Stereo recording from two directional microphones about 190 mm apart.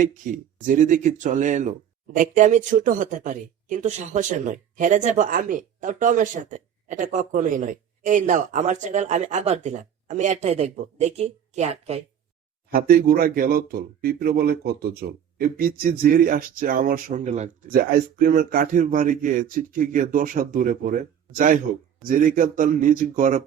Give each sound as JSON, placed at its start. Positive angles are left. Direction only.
{"t": 0.0, "sound": "speech", "side_deg": -45}
{"t": 12.7, "sound": "speech", "side_deg": -50}
{"t": 17.7, "sound": "speech", "side_deg": -50}